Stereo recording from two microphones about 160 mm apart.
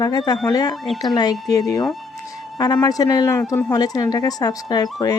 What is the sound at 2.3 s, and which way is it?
Speech, 25° left (ahead or behind).